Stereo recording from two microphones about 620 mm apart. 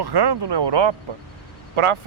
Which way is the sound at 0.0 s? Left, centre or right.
Right.